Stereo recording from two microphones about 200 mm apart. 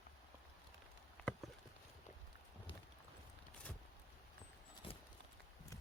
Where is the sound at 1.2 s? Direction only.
5° left (ahead or behind).